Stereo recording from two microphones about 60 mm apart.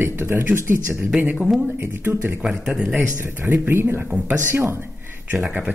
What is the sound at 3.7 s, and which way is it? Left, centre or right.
Speech, right.